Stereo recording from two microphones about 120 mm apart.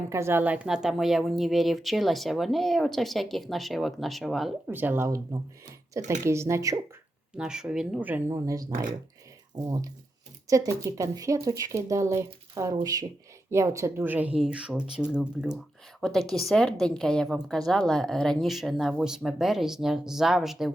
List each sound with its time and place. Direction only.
0.1 s speech: 20° right (ahead or behind); by 4.5 s centre (ahead or behind)
4.6 s speech: 15° right (ahead or behind)
7.3 s speech: 5° right (ahead or behind)
8.3 s speech: 25° right (ahead or behind); by 20.7 s centre (ahead or behind)